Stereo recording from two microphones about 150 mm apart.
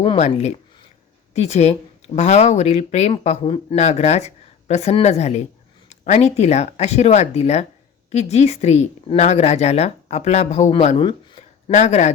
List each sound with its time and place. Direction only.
0.2 s speech: 45° left (ahead or behind)
11.7 s speech: 50° left (ahead or behind)